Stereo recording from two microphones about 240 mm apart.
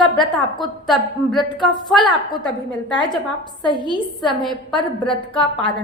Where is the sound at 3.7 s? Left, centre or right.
Centre.